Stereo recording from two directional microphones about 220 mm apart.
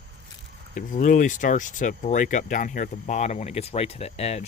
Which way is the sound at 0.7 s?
35° left (ahead or behind).